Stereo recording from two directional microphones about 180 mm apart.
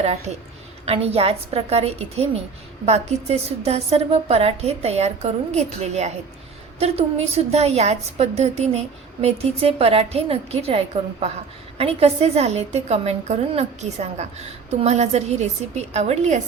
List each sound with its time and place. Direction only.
0.9 s a woman's voice: 35° right (ahead or behind)